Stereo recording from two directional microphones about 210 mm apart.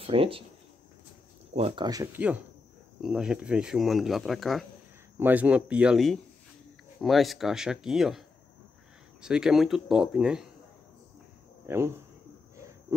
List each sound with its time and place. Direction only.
0.0 s speech: 25° right (ahead or behind)
1.5 s speech: 30° right (ahead or behind)
1.9 s speech: 15° right (ahead or behind)
3.0 s speech: centre (ahead or behind)
9.2 s speech: 5° right (ahead or behind)
11.6 s speech: 10° right (ahead or behind)